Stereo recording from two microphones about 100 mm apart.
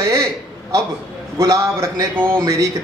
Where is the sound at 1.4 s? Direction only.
35° right (ahead or behind).